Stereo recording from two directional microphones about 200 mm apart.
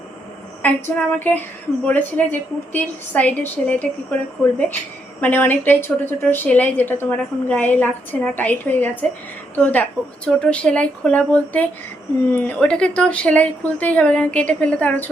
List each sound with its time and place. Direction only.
0.6 s a woman's voice: 10° left (ahead or behind)